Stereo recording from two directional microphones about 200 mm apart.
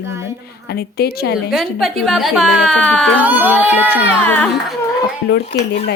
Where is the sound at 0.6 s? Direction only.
50° left (ahead or behind).